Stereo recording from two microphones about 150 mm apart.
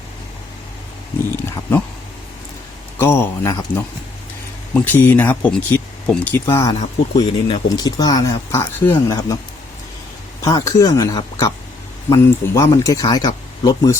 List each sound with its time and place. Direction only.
3.0 s speech: 20° left (ahead or behind)
4.7 s speech: 10° left (ahead or behind)
6.7 s speech: 50° left (ahead or behind)
7.2 s speech: 30° left (ahead or behind)
10.4 s speech: 25° left (ahead or behind)